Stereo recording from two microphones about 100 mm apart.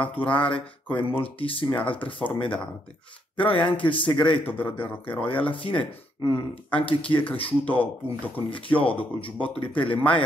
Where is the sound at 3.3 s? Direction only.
60° left (ahead or behind).